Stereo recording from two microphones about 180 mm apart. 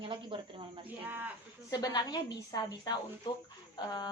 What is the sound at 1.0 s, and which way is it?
Speech, 10° right (ahead or behind).